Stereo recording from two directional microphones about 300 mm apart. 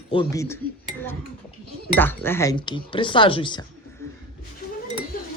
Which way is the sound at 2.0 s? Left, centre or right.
Centre.